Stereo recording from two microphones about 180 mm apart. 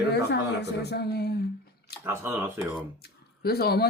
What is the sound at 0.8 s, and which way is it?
Speech, 65° left (ahead or behind).